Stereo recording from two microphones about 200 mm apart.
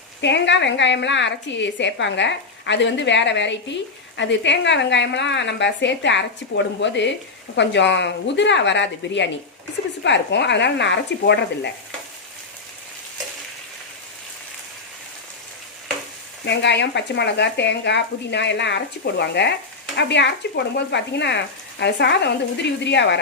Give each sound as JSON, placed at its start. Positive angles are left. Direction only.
{"t": 0.2, "sound": "a woman's voice", "side_deg": 60}
{"t": 16.5, "sound": "a woman's voice", "side_deg": 60}